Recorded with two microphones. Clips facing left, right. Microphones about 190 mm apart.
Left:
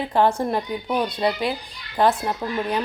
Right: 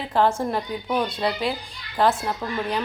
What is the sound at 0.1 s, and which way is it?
A woman's voice, 15° left (ahead or behind).